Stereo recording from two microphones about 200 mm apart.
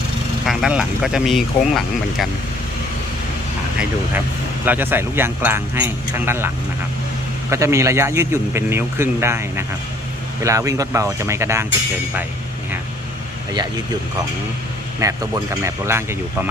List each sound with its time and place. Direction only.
0.4 s speech: centre (ahead or behind)
4.6 s speech: 10° right (ahead or behind)
7.5 s speech: 15° right (ahead or behind)
15.0 s speech: 15° right (ahead or behind)